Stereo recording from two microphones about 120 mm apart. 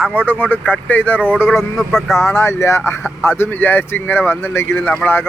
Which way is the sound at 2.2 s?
20° left (ahead or behind).